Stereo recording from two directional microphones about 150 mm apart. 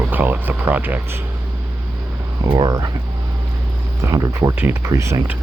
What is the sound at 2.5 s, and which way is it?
Speech, 25° right (ahead or behind).